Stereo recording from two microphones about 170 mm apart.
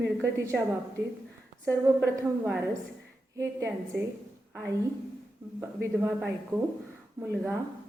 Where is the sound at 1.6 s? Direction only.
15° right (ahead or behind).